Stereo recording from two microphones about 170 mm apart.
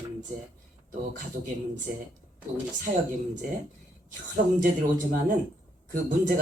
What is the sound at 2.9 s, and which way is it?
Speech, 45° right (ahead or behind).